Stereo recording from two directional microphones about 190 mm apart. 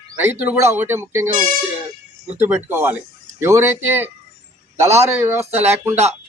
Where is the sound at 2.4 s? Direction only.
10° right (ahead or behind).